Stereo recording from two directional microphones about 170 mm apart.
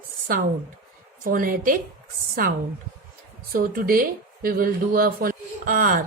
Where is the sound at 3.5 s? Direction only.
55° right (ahead or behind).